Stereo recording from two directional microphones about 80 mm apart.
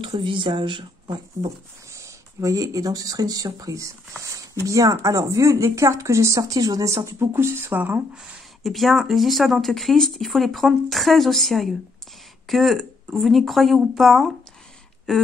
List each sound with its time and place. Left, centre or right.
0.2 s speech: right
1.9 s speech: right
7.3 s speech: right
8.6 s speech: centre